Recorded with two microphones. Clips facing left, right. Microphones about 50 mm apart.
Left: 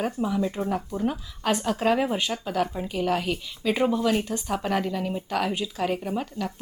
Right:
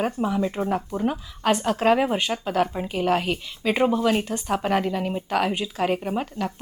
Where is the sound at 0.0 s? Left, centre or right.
Right.